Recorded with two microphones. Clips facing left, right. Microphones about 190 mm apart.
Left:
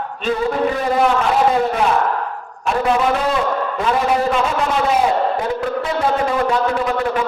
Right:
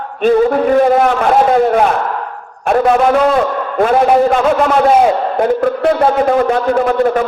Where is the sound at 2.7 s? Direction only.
55° right (ahead or behind).